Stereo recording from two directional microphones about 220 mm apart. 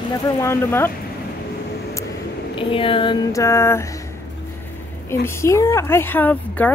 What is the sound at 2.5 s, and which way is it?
Speech, 25° left (ahead or behind).